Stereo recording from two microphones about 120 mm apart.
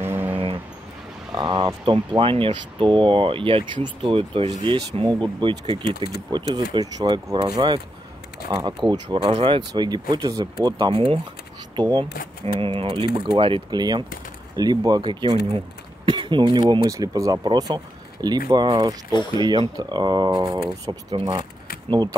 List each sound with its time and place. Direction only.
0.0 s a sound: 20° right (ahead or behind)
1.3 s speech: 35° right (ahead or behind); by 4.6 s 50° right (ahead or behind)
5.0 s speech: 40° right (ahead or behind)
7.5 s speech: 40° right (ahead or behind)
9.8 s speech: 35° right (ahead or behind)